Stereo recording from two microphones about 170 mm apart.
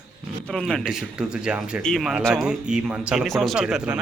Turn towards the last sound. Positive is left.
turn(degrees=-5)  # may be behind; listen again after turning